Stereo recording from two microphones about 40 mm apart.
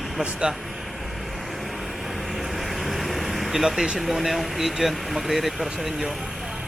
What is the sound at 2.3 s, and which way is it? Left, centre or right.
Vehicle, centre.